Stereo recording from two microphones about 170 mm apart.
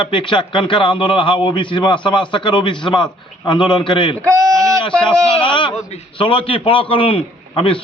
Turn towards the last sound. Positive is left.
turn(degrees=30)  # may be behind; listen again after turning